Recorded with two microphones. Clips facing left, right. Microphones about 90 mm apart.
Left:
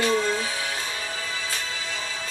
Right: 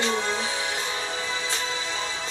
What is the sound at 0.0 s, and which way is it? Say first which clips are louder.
Music: left 3 dB; 20° right (ahead or behind).